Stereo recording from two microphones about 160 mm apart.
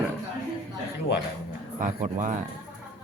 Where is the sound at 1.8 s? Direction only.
55° right (ahead or behind).